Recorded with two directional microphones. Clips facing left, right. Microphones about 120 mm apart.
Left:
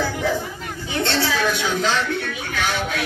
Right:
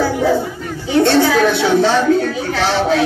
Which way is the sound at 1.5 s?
35° right (ahead or behind).